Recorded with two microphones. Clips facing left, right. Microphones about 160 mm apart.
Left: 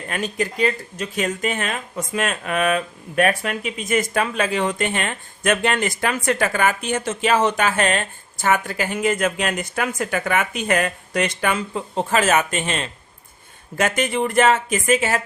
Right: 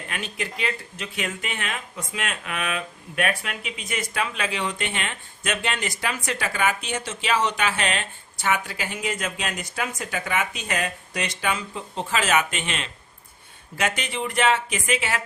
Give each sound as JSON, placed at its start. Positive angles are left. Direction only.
{"t": 0.1, "sound": "speech", "side_deg": 40}